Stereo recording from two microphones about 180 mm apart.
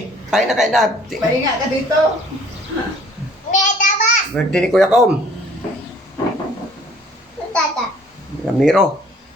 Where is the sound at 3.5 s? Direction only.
45° left (ahead or behind).